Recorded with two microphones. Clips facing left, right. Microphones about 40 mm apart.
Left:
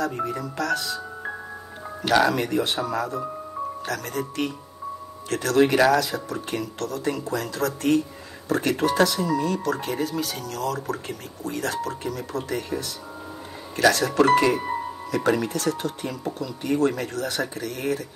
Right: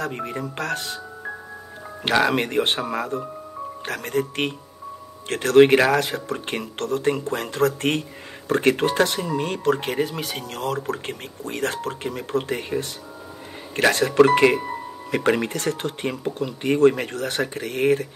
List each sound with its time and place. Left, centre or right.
0.0 s speech: right
2.2 s speech: right